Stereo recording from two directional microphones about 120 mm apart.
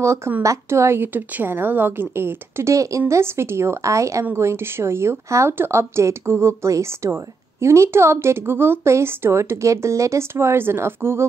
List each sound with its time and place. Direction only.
0.0 s a woman's voice: 25° right (ahead or behind)